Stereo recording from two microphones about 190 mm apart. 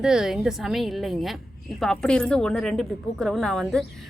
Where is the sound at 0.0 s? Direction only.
5° right (ahead or behind).